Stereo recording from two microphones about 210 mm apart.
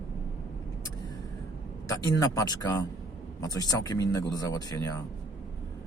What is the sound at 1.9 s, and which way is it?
Speech, 15° left (ahead or behind).